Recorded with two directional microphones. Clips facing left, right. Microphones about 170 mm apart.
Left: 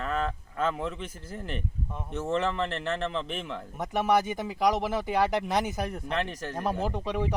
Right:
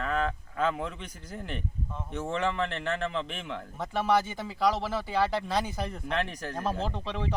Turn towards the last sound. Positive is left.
turn(degrees=15)  # may be behind; listen again after turning